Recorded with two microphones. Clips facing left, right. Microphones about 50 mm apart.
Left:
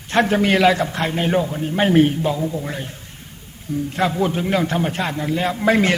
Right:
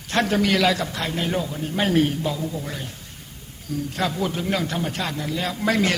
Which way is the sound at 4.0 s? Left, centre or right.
Left.